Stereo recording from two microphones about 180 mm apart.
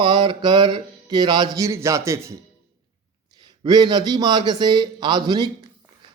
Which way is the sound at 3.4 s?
25° right (ahead or behind).